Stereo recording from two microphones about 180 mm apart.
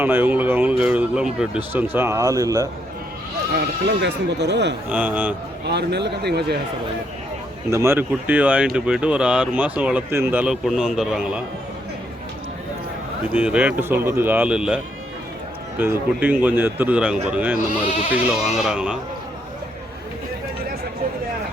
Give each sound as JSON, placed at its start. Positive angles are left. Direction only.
{"t": 0.0, "sound": "speech", "side_deg": -10}
{"t": 3.5, "sound": "speech", "side_deg": -70}
{"t": 4.9, "sound": "speech", "side_deg": -10}
{"t": 5.6, "sound": "speech", "side_deg": -70}
{"t": 7.7, "sound": "speech", "side_deg": -15}
{"t": 13.3, "sound": "speech", "side_deg": -5}
{"t": 15.8, "sound": "speech", "side_deg": -10}